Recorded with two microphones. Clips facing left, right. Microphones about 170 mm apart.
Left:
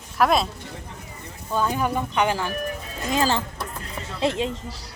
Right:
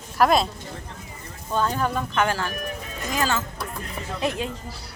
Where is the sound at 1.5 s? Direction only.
10° left (ahead or behind).